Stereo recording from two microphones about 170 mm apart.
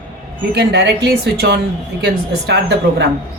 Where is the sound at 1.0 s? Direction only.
80° right.